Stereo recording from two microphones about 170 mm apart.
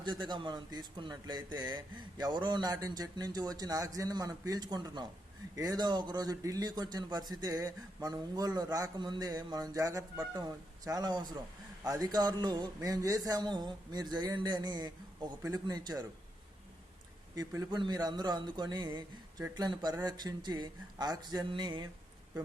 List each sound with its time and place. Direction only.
0.0 s speech: 25° right (ahead or behind)
17.3 s speech: 20° right (ahead or behind)